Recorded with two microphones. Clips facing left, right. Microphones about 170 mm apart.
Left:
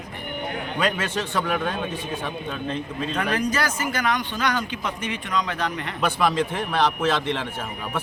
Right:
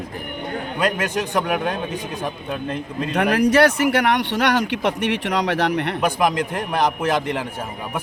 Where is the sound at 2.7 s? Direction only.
65° right (ahead or behind).